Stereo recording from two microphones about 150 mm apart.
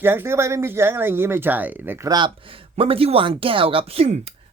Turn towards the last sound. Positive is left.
turn(degrees=-40)  # may be behind; listen again after turning